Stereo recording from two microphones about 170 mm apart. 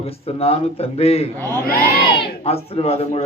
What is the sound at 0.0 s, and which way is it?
A man's voice, 35° left (ahead or behind).